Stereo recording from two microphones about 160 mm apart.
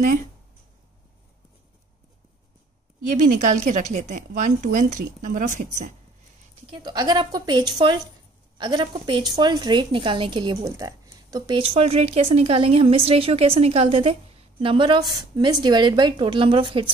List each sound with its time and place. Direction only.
3.3 s a woman's voice: 50° right (ahead or behind)
6.8 s a woman's voice: 25° right (ahead or behind)